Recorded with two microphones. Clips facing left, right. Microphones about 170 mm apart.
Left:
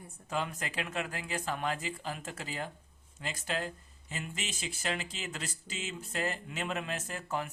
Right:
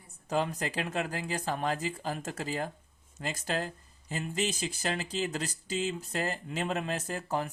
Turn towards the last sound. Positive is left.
turn(degrees=-35)  # may be behind; listen again after turning